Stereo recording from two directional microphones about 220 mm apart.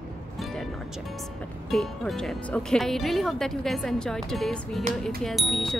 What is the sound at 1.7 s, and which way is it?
Speech, centre (ahead or behind).